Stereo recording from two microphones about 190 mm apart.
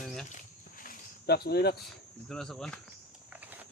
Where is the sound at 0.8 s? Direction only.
50° left (ahead or behind).